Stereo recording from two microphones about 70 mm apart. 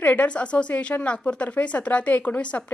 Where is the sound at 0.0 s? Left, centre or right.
Left.